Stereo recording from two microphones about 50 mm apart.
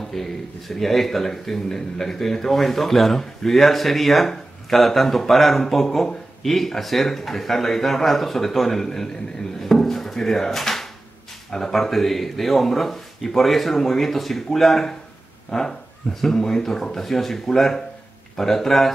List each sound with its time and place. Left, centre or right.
0.1 s speech: centre
9.6 s drawer open or close: centre
11.5 s speech: centre